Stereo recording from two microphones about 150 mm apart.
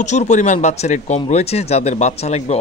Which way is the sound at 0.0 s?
50° left (ahead or behind).